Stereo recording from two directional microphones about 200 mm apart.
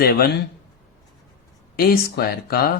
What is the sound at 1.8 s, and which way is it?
Speech, 50° left (ahead or behind).